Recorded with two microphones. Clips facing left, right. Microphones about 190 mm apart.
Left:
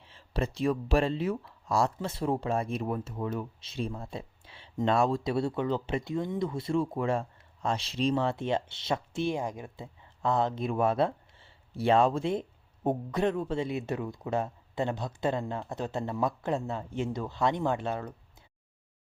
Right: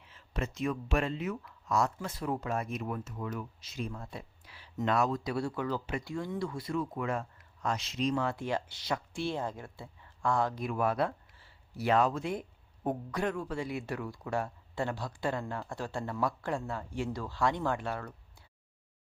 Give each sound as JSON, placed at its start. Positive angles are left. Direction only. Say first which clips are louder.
{"t": 0.0, "sound": "speech", "louder": "left 5 dB", "side_deg": 30}